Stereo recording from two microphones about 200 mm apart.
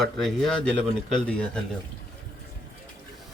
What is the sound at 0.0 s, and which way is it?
Speech, centre (ahead or behind).